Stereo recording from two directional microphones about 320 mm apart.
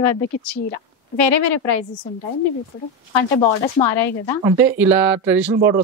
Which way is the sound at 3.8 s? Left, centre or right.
Centre.